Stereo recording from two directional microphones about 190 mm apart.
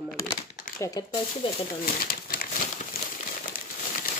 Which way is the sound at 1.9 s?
50° left (ahead or behind).